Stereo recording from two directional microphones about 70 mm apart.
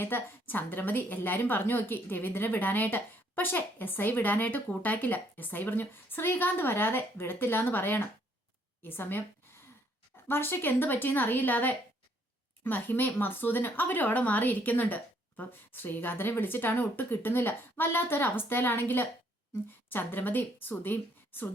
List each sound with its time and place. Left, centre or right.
0.0 s a woman's voice: left
10.2 s a woman's voice: left